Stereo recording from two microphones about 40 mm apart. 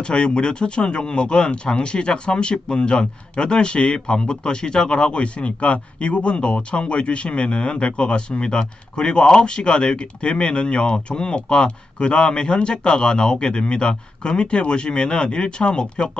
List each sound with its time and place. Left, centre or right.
0.0 s speech: left